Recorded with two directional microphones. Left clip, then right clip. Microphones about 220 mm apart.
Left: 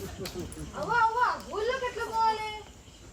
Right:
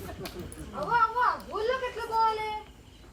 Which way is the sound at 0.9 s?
Centre (ahead or behind).